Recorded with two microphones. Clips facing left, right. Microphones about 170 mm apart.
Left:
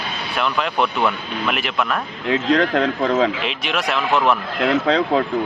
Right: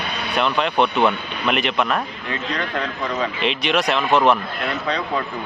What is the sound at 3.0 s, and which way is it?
Speech, 75° left (ahead or behind).